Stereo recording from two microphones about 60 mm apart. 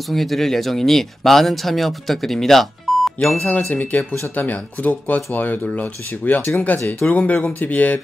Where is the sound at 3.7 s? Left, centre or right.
Left.